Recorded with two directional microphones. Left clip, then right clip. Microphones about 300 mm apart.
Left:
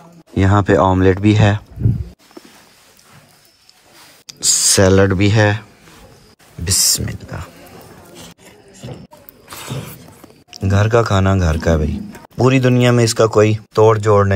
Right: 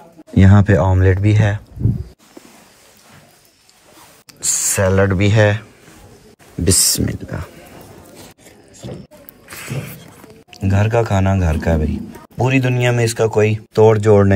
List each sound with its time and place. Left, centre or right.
0.3 s a man's voice: centre
4.3 s speech: centre
8.2 s a sound: left
9.5 s a sound: centre
10.7 s a man's voice: centre
13.8 s speech: centre